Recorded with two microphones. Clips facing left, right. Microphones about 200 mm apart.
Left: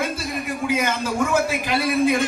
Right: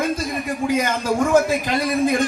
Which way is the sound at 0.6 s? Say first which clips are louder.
Right 2 dB; 45° right (ahead or behind).